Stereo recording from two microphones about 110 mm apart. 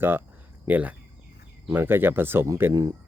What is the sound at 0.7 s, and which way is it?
Speech, 15° right (ahead or behind).